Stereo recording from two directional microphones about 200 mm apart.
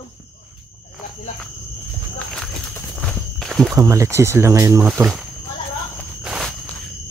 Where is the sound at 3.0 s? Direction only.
Centre (ahead or behind).